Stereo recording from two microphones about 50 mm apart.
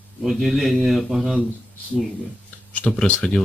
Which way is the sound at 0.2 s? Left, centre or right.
Centre.